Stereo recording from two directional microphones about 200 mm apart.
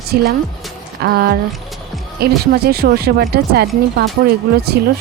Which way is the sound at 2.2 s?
50° right (ahead or behind).